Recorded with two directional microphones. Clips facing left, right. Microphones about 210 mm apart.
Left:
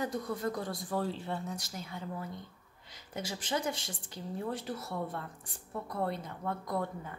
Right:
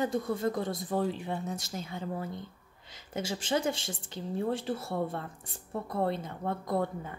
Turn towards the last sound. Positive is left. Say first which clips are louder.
# right 4 dB
turn(degrees=-25)  # may be behind; listen again after turning